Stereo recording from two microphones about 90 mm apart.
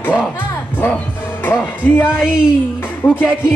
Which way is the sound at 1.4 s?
25° left (ahead or behind).